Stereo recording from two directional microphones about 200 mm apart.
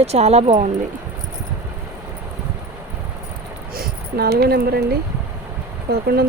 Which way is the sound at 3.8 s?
50° right (ahead or behind).